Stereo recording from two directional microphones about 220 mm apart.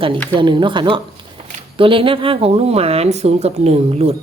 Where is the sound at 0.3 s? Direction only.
20° right (ahead or behind).